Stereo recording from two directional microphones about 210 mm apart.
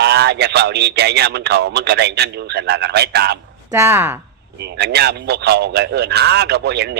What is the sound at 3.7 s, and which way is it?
Speech, 10° right (ahead or behind).